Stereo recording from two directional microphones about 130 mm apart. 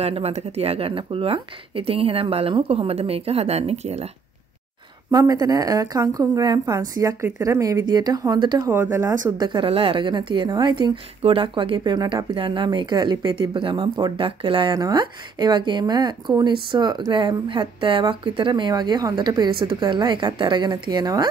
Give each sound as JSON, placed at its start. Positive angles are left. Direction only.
{"t": 0.0, "sound": "speech", "side_deg": -50}
{"t": 5.1, "sound": "a woman's voice", "side_deg": -30}
{"t": 8.6, "sound": "speech", "side_deg": -15}
{"t": 9.5, "sound": "a woman's voice", "side_deg": -40}